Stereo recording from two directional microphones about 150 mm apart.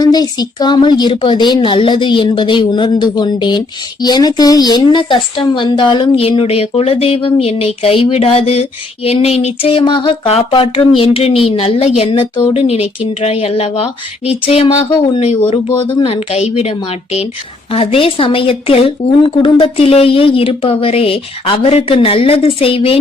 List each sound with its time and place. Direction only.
0.0 s a woman's voice: 25° left (ahead or behind)